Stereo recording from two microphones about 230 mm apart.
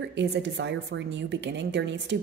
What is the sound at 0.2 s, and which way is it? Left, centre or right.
A woman's voice, right.